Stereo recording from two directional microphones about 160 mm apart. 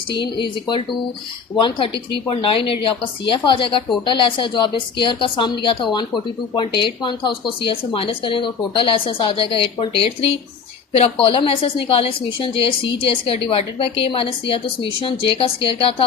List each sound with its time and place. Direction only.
1.5 s a woman's voice: 30° left (ahead or behind)